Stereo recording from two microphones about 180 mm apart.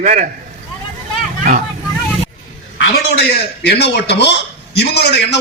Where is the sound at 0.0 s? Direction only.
45° right (ahead or behind).